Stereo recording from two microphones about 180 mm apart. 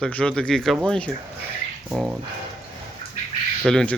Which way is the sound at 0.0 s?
5° left (ahead or behind).